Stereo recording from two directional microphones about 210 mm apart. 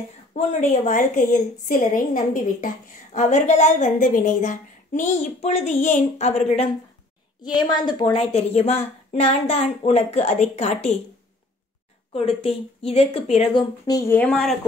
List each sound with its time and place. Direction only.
0.3 s a woman's voice: 35° left (ahead or behind)
7.4 s a woman's voice: 20° left (ahead or behind)
12.1 s a woman's voice: 25° left (ahead or behind); by 14.6 s 5° left (ahead or behind)